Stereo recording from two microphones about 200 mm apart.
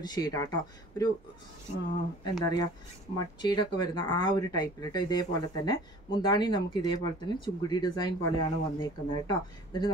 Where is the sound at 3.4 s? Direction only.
20° left (ahead or behind).